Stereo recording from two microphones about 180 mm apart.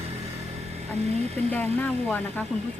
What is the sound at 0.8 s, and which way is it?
Speech, 35° right (ahead or behind).